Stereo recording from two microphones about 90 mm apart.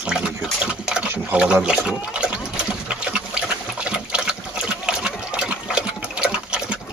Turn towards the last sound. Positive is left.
turn(degrees=-10)  # may be behind; listen again after turning